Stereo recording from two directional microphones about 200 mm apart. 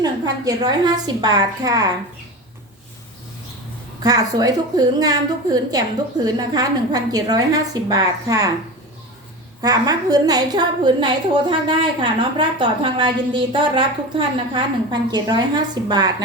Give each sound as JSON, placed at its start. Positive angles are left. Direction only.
{"t": 0.0, "sound": "a woman's voice", "side_deg": -20}
{"t": 4.0, "sound": "a woman's voice", "side_deg": -20}
{"t": 9.6, "sound": "a woman's voice", "side_deg": -20}